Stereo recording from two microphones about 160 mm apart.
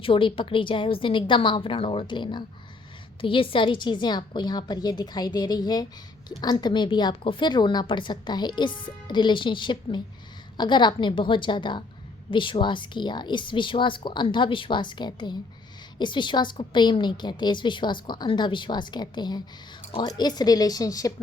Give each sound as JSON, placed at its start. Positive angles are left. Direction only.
{"t": 0.0, "sound": "a woman's voice", "side_deg": 35}